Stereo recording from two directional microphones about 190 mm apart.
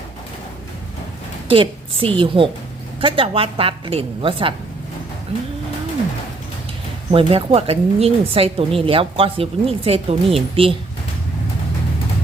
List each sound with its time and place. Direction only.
1.5 s a woman's voice: 30° right (ahead or behind)
7.1 s a woman's voice: 30° right (ahead or behind)